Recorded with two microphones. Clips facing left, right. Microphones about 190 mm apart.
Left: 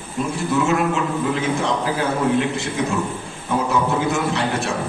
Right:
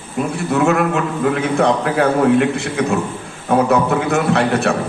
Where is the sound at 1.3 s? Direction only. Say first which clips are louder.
Right 5 dB; 60° right (ahead or behind).